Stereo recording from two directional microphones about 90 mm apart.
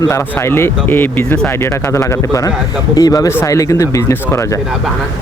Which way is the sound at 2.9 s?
40° left (ahead or behind).